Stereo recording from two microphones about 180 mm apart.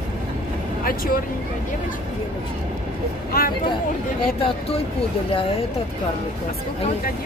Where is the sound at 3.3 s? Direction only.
55° left (ahead or behind).